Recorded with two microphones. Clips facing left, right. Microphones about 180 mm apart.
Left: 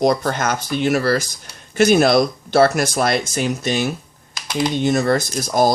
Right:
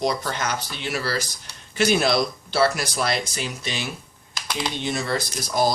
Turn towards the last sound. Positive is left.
turn(degrees=50)  # may be behind; listen again after turning